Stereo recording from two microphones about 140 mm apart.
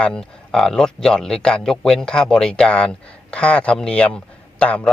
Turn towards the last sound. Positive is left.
turn(degrees=10)  # may be behind; listen again after turning